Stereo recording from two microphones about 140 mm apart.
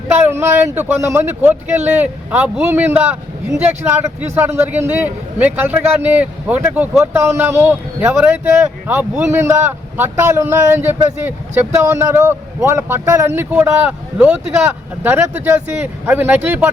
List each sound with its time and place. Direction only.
0.1 s a man's voice: 15° right (ahead or behind)